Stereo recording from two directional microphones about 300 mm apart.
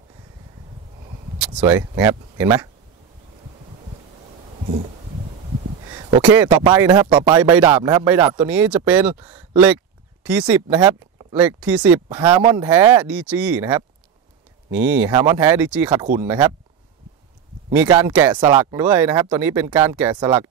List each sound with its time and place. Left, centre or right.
1.7 s speech: centre
5.9 s a sound: centre
6.2 s speech: centre
12.2 s speech: centre
12.6 s speech: centre
17.7 s speech: centre